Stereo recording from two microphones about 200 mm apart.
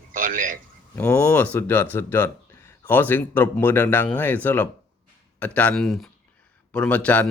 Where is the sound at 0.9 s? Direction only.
10° left (ahead or behind).